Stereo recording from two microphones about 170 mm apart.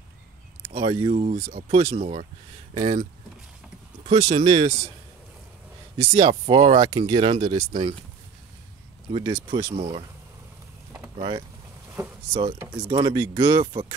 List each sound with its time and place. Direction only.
0.7 s speech: 30° right (ahead or behind)
2.7 s speech: 25° right (ahead or behind)
4.1 s speech: 30° right (ahead or behind)
6.1 s speech: 30° right (ahead or behind)
9.1 s speech: 25° right (ahead or behind)
11.1 s speech: 30° right (ahead or behind)
12.8 s speech: 30° right (ahead or behind)